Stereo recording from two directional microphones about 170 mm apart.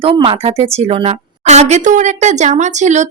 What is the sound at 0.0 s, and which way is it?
A woman's voice, 30° right (ahead or behind).